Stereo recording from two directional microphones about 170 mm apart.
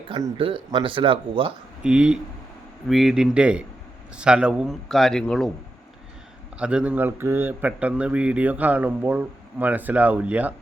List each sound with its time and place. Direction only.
0.1 s speech: 30° right (ahead or behind)
1.8 s speech: 5° right (ahead or behind)
6.6 s a man's voice: 5° right (ahead or behind)